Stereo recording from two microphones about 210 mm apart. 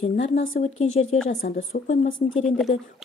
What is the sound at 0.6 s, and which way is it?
A woman's voice, 30° left (ahead or behind).